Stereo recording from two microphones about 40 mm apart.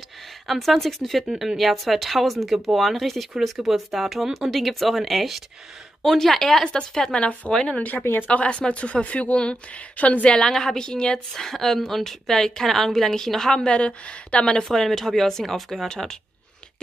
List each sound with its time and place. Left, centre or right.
0.5 s speech: centre
1.2 s speech: centre
1.6 s a woman's voice: centre
7.1 s a woman's voice: left
8.0 s speech: left
8.3 s speech: left
10.3 s a woman's voice: centre
13.7 s a woman's voice: left
14.6 s a woman's voice: centre
15.9 s a woman's voice: centre